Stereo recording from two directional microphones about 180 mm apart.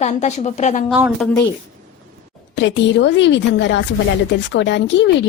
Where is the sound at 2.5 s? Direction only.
85° left.